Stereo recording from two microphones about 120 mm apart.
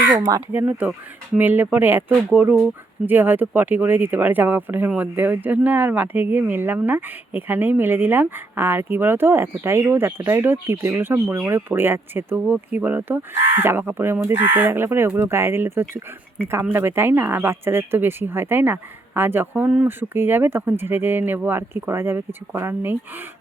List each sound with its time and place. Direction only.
0.2 s speech: 30° right (ahead or behind)
0.5 s speech: 15° right (ahead or behind)